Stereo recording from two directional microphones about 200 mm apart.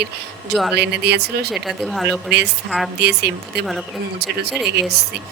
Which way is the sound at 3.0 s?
55° right (ahead or behind).